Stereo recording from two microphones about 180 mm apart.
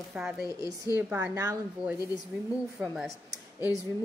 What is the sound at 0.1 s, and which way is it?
A woman's voice, 5° right (ahead or behind).